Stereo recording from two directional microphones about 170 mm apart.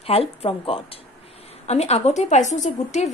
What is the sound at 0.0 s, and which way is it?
A woman's voice, 35° left (ahead or behind).